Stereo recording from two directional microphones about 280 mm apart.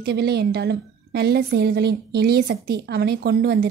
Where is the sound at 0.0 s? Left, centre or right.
Right.